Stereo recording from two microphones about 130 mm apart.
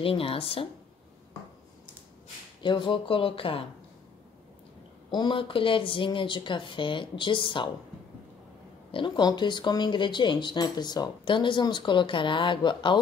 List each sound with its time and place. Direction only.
0.0 s speech: 45° left (ahead or behind)
2.6 s speech: 35° left (ahead or behind)
5.1 s speech: 35° left (ahead or behind)
8.9 s speech: 35° left (ahead or behind)